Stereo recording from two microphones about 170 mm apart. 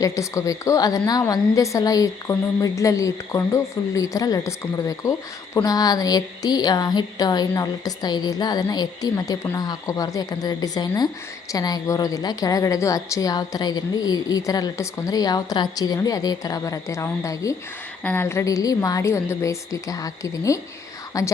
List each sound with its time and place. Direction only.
0.0 s a woman's voice: 20° left (ahead or behind)